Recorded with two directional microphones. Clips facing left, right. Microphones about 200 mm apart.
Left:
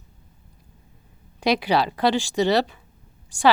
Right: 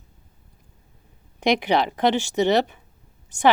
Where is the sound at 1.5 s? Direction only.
20° right (ahead or behind).